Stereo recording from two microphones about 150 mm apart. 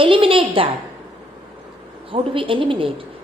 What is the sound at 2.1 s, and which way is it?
Speech, 35° right (ahead or behind).